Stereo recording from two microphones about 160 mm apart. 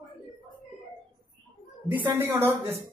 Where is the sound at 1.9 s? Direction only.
15° right (ahead or behind).